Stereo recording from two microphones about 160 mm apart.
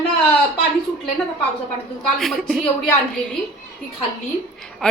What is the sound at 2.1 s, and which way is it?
Speech, centre (ahead or behind).